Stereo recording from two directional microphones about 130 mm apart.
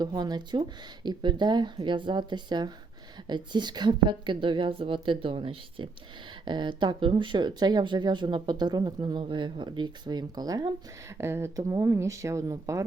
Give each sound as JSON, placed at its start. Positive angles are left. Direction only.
{"t": 0.0, "sound": "speech", "side_deg": -30}
{"t": 11.2, "sound": "speech", "side_deg": -20}